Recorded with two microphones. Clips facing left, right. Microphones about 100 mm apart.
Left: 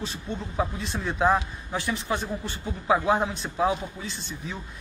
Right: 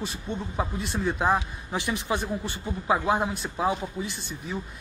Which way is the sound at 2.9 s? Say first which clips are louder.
Left 2 dB; centre (ahead or behind).